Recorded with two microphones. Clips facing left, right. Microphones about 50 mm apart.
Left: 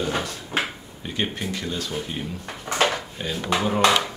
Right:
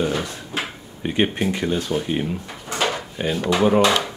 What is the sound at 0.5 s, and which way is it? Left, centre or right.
Drawer open or close, left.